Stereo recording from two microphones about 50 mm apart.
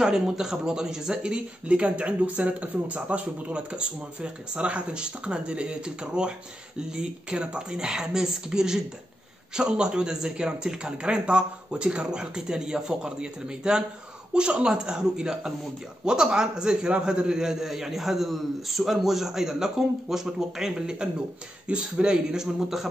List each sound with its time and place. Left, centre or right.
0.0 s a man's voice: centre
1.7 s a man's voice: right; by 22.8 s centre